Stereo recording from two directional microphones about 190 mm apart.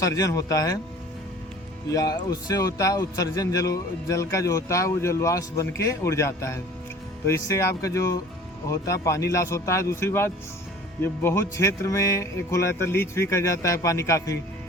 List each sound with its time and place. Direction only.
0.0 s music: 15° left (ahead or behind)
1.9 s music: 20° left (ahead or behind)